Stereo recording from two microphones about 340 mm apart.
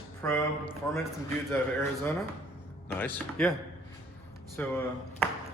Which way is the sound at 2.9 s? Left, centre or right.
Centre.